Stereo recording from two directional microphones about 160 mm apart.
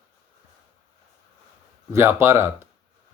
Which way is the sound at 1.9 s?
15° right (ahead or behind).